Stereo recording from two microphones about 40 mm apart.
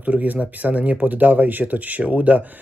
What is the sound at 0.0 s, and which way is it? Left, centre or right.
Speech, right.